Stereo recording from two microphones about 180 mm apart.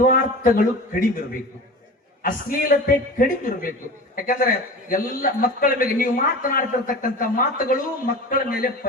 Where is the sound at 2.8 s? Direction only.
50° left (ahead or behind).